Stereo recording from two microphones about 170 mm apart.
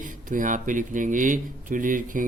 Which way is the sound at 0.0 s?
50° right (ahead or behind).